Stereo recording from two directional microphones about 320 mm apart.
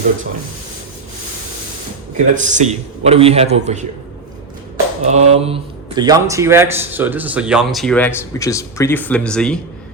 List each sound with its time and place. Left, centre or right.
2.1 s a man's voice: right
5.0 s speech: right; by 9.6 s centre